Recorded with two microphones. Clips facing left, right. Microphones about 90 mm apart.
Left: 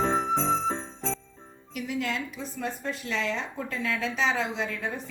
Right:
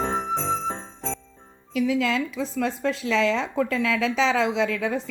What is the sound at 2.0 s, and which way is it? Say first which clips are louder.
A woman's voice: right 7 dB; 90° right.